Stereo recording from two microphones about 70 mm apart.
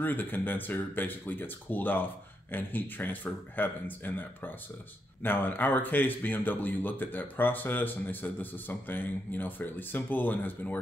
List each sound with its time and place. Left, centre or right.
0.0 s speech: left